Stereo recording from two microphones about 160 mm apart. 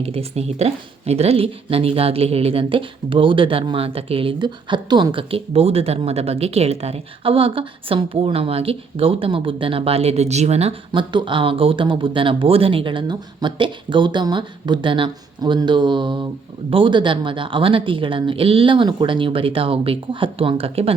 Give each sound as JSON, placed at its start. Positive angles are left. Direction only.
{"t": 0.0, "sound": "speech", "side_deg": -40}